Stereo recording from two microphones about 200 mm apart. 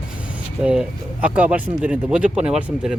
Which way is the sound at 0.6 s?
5° right (ahead or behind).